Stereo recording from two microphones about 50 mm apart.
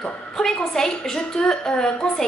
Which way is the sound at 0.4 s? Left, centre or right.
Centre.